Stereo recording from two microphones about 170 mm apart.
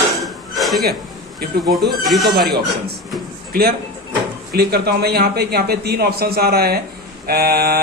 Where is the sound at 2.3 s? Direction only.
65° right (ahead or behind).